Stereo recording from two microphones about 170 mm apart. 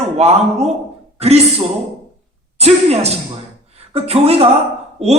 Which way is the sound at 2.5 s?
40° right (ahead or behind).